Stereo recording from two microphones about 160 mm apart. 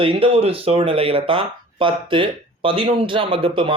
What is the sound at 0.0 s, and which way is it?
Speech, 35° right (ahead or behind).